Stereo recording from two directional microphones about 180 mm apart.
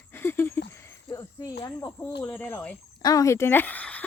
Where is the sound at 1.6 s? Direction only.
20° left (ahead or behind).